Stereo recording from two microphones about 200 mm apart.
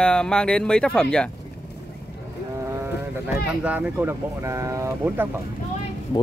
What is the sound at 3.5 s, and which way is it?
Speech, 5° right (ahead or behind).